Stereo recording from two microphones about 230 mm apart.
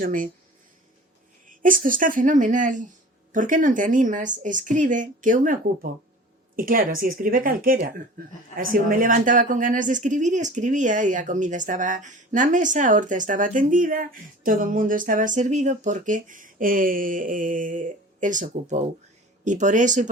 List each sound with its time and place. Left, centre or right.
0.0 s a woman's voice: right
1.5 s a woman's voice: right